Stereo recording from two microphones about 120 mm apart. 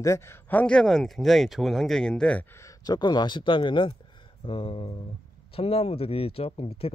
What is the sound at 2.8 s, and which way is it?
Speech, 35° left (ahead or behind).